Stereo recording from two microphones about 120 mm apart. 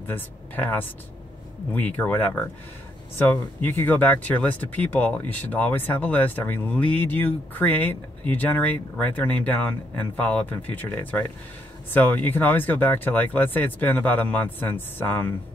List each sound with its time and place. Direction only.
0.0 s speech: 15° left (ahead or behind)